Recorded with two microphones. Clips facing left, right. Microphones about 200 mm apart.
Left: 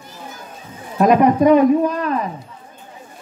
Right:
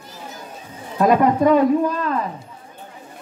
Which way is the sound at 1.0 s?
20° left (ahead or behind).